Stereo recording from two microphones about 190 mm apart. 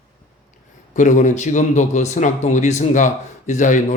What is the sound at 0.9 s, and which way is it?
Speech, 40° left (ahead or behind).